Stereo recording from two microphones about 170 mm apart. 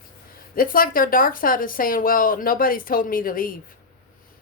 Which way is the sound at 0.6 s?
55° left (ahead or behind).